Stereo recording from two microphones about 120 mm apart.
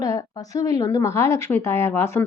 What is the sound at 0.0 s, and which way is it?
Speech, 30° left (ahead or behind).